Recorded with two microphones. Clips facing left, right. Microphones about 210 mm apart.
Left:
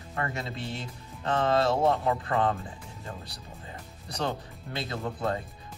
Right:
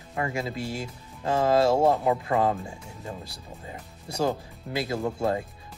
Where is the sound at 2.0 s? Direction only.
15° right (ahead or behind).